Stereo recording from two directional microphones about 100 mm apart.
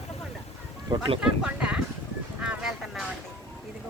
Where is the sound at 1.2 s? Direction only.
10° right (ahead or behind).